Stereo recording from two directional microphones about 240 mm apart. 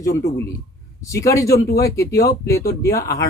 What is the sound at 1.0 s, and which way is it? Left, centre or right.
Speech, centre.